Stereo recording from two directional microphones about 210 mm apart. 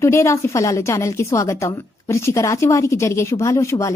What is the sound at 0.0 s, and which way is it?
A woman's voice, 15° left (ahead or behind).